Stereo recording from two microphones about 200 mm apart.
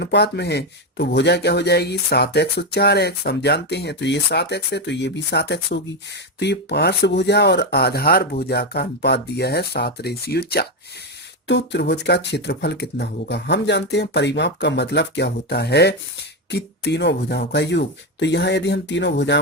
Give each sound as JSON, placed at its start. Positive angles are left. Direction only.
{"t": 0.0, "sound": "speech", "side_deg": 60}